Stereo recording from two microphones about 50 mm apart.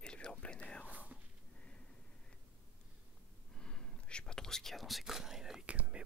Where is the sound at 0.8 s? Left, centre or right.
Right.